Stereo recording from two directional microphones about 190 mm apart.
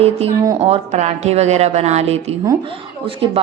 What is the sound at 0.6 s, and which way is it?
Speech, 35° right (ahead or behind).